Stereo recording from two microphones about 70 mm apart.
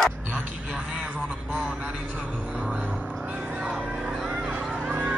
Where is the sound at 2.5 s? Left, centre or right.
Centre.